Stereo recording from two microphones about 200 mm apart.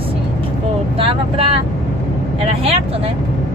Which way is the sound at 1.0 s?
30° right (ahead or behind).